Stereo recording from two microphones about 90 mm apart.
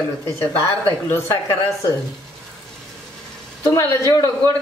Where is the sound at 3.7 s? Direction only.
40° left (ahead or behind).